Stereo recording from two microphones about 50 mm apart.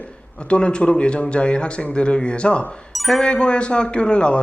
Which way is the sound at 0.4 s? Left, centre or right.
Left.